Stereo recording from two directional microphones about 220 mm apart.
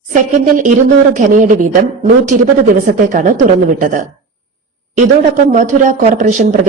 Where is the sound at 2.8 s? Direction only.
35° right (ahead or behind).